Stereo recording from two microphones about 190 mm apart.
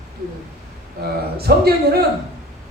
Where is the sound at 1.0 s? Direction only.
55° right (ahead or behind).